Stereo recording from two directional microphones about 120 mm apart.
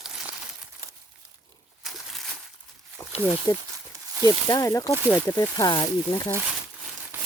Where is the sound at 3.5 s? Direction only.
30° left (ahead or behind).